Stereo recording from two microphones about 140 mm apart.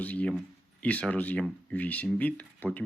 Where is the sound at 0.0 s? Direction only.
10° left (ahead or behind).